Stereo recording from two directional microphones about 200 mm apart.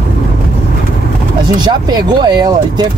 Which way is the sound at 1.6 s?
20° right (ahead or behind).